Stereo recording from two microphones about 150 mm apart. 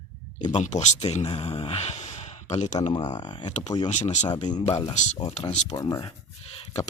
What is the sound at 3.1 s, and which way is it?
Speech, 30° left (ahead or behind).